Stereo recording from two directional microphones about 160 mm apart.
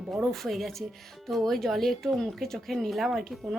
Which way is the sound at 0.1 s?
Centre (ahead or behind).